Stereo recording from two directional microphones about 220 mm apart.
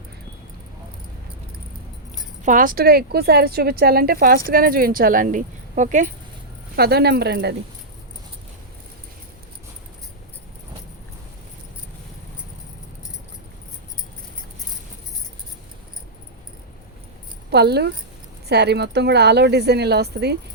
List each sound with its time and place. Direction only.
2.4 s speech: 35° right (ahead or behind)
6.7 s speech: 45° right (ahead or behind)
17.5 s speech: 50° right (ahead or behind)